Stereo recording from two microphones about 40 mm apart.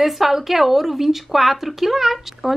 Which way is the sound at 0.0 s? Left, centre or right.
Centre.